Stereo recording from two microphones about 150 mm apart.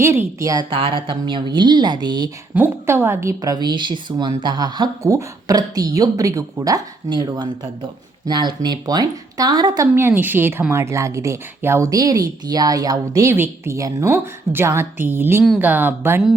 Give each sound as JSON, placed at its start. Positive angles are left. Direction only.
{"t": 0.0, "sound": "speech", "side_deg": -15}
{"t": 0.7, "sound": "speech", "side_deg": -35}
{"t": 2.6, "sound": "speech", "side_deg": -15}